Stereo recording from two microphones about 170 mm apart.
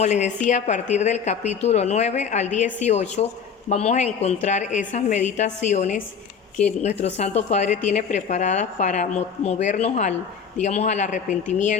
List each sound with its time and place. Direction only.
0.0 s a woman's voice: 40° left (ahead or behind)